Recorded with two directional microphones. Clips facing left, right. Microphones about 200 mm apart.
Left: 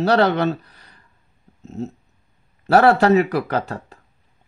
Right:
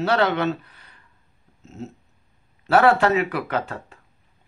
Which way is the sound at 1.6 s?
35° left (ahead or behind).